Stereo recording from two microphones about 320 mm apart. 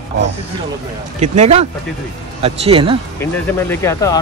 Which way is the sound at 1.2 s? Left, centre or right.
Right.